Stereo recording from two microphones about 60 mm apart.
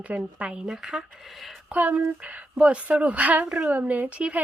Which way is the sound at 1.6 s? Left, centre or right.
Right.